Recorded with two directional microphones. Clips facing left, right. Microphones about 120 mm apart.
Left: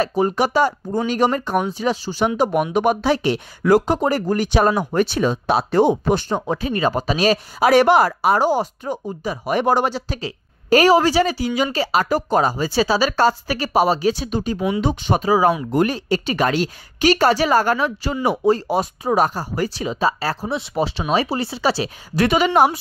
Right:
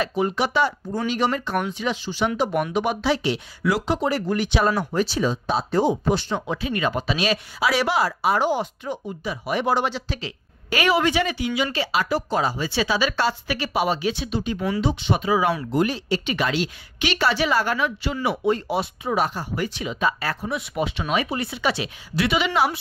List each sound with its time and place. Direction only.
0.0 s speech: 40° left (ahead or behind)
4.9 s speech: 55° left (ahead or behind); by 15.5 s 40° left (ahead or behind)
15.7 s speech: 50° left (ahead or behind)